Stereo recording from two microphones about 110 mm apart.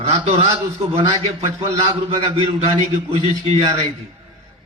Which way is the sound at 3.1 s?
80° right.